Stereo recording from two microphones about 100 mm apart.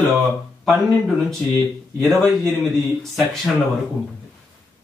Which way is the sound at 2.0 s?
Centre (ahead or behind).